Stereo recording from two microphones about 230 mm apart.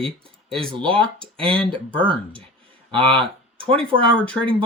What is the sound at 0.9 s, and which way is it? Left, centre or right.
Speech, right.